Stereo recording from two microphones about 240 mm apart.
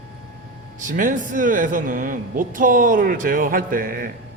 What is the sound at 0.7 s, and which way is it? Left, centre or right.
A man's voice, right.